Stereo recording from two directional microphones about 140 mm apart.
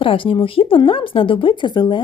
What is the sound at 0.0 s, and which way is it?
Speech, 40° left (ahead or behind).